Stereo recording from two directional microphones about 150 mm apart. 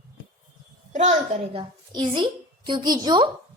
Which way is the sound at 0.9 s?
45° right (ahead or behind).